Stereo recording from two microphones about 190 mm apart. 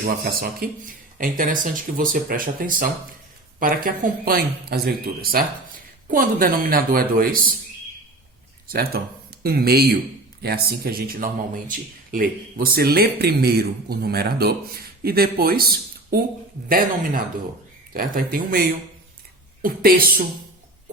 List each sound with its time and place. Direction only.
0.0 s speech: 50° right (ahead or behind)
8.6 s speech: 55° right (ahead or behind)
19.6 s speech: 50° right (ahead or behind)